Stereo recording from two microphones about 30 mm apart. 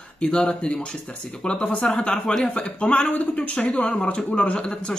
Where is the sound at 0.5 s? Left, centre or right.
Left.